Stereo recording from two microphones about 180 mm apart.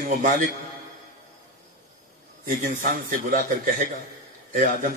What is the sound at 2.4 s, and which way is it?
A man's voice, 45° right (ahead or behind).